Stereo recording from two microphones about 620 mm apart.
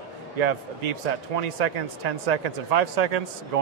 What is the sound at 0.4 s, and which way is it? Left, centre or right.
A man's voice, right.